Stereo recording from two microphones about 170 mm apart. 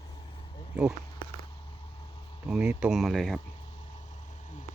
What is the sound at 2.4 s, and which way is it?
Speech, 5° right (ahead or behind).